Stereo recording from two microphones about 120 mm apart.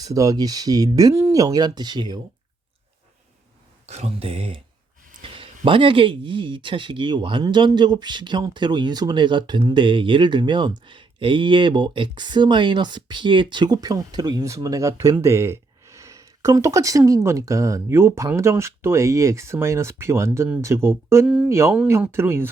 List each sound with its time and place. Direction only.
0.0 s speech: 30° right (ahead or behind)
3.8 s speech: 65° right (ahead or behind); by 15.1 s 25° right (ahead or behind)
15.1 s a sound: 25° right (ahead or behind)
17.1 s speech: 25° right (ahead or behind)
21.2 s speech: 10° right (ahead or behind)
21.5 s speech: 20° right (ahead or behind)